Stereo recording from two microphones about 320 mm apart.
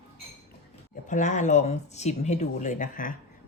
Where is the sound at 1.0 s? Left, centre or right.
Left.